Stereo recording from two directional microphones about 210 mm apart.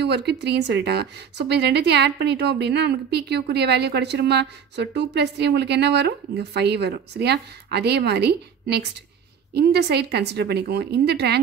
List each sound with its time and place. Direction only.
0.0 s speech: 55° right (ahead or behind)